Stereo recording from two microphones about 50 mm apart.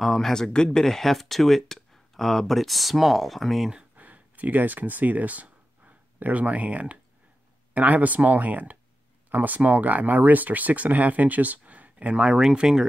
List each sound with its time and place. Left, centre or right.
0.0 s speech: centre
3.9 s a sound: right
7.7 s speech: right
12.3 s speech: centre